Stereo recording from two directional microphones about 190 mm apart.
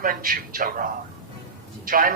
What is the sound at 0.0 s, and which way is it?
A man's voice, 50° right (ahead or behind).